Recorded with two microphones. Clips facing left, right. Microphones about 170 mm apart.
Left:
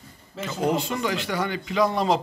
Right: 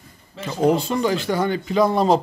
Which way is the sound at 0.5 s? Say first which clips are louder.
Right 6 dB; 30° right (ahead or behind).